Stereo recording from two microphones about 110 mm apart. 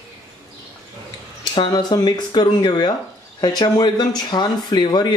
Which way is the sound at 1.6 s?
45° left (ahead or behind).